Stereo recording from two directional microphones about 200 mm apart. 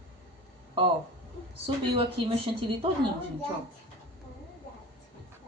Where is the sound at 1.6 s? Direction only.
25° right (ahead or behind).